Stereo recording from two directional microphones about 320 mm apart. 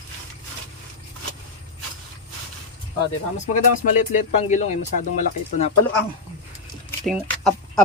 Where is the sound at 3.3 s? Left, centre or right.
Left.